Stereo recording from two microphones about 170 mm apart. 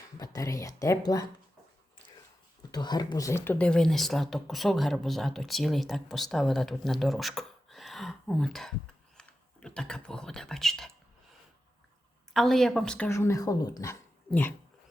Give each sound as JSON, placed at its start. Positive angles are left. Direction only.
{"t": 0.2, "sound": "speech", "side_deg": 20}
{"t": 2.7, "sound": "speech", "side_deg": 25}
{"t": 12.3, "sound": "speech", "side_deg": 0}
{"t": 13.1, "sound": "speech", "side_deg": 15}
{"t": 14.3, "sound": "speech", "side_deg": 10}